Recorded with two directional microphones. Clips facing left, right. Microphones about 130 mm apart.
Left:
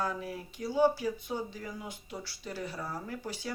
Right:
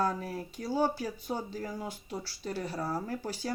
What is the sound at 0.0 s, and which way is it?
Speech, 40° right (ahead or behind).